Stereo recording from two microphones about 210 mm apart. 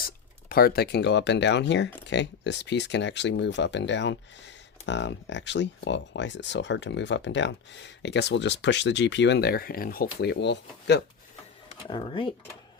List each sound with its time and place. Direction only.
0.0 s speech: 45° left (ahead or behind)
11.9 s speech: 25° left (ahead or behind)